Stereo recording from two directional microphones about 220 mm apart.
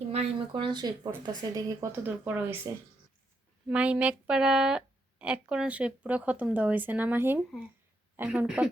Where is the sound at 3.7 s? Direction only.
5° right (ahead or behind).